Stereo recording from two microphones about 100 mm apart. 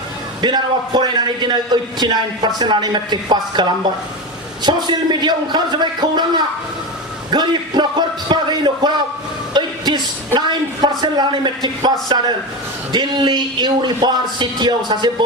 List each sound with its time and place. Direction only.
0.4 s a man's voice: 50° right (ahead or behind)